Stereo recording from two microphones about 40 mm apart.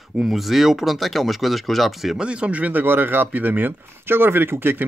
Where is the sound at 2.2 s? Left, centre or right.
Right.